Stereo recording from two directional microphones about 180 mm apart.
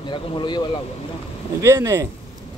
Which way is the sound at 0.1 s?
25° left (ahead or behind).